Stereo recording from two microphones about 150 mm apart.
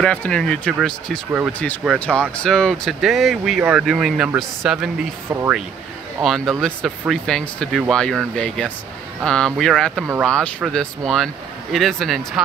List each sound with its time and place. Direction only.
0.0 s speech: 5° left (ahead or behind)
5.3 s speech: 20° right (ahead or behind)
6.2 s speech: centre (ahead or behind)